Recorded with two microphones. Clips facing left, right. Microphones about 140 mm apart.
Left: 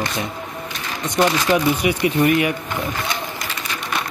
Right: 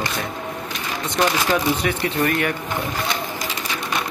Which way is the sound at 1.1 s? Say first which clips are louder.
Left 3 dB; 15° left (ahead or behind).